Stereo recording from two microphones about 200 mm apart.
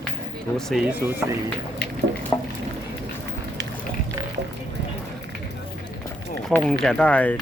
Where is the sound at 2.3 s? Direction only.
10° left (ahead or behind).